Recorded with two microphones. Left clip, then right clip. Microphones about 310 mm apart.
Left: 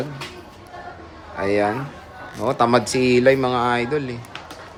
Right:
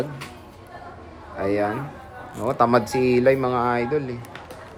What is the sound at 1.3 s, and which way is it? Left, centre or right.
A man's voice, centre.